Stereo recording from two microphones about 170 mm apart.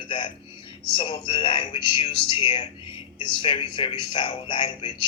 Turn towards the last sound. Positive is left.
turn(degrees=30)  # may be behind; listen again after turning